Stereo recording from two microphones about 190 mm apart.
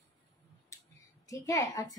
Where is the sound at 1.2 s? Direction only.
15° left (ahead or behind).